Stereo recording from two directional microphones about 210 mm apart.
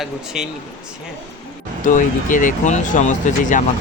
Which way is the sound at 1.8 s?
40° left (ahead or behind).